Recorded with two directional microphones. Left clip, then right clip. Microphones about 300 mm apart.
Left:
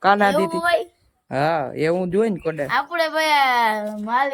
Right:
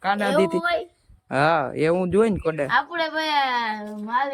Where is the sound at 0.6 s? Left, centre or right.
Centre.